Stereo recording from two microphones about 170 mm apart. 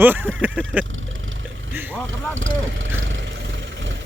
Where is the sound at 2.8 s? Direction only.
90° right.